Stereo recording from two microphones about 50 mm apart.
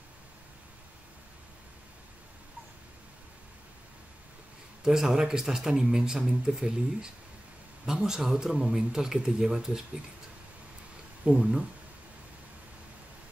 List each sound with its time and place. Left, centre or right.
4.8 s speech: centre
11.2 s speech: centre